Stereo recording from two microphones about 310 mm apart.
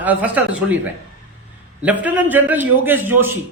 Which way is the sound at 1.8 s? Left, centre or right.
Centre.